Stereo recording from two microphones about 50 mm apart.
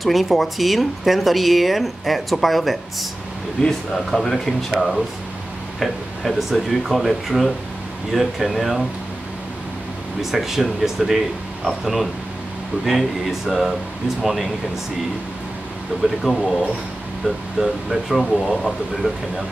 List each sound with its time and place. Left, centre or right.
0.0 s speech: centre
3.6 s speech: centre
10.3 s speech: centre
16.0 s speech: centre
17.6 s speech: centre
18.2 s speech: centre